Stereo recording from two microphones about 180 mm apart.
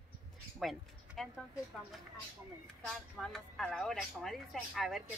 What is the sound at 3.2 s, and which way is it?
Speech, 5° left (ahead or behind).